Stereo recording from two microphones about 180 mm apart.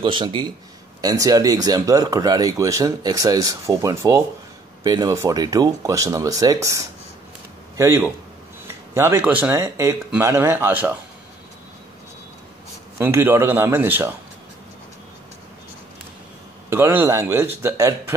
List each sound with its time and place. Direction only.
0.0 s speech: 25° right (ahead or behind); by 11.0 s 10° right (ahead or behind)
12.9 s speech: 15° right (ahead or behind)
16.7 s speech: 10° right (ahead or behind)